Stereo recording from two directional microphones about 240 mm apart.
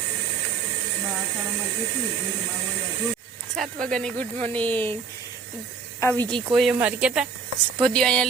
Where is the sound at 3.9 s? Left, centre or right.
Centre.